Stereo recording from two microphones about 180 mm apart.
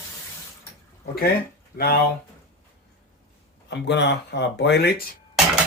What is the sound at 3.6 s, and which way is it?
Speech, 70° left (ahead or behind).